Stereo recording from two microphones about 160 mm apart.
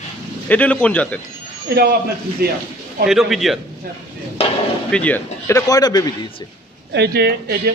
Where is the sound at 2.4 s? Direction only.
75° right (ahead or behind).